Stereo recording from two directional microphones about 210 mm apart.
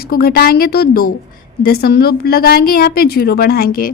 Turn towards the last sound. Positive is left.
turn(degrees=45)  # may be behind; listen again after turning